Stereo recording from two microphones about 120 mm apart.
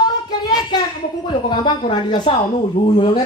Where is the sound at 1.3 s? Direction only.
40° left (ahead or behind).